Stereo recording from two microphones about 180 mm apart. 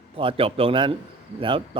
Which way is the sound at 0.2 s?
30° right (ahead or behind).